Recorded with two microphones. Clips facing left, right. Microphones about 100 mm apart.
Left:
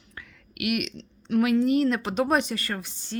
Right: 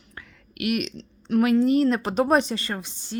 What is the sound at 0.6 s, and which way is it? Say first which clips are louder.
Speech: right 2 dB; 35° right (ahead or behind).